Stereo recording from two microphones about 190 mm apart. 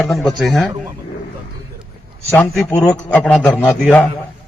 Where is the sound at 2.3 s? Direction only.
Centre (ahead or behind).